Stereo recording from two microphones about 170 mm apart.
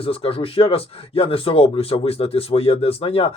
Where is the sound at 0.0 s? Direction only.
35° left (ahead or behind).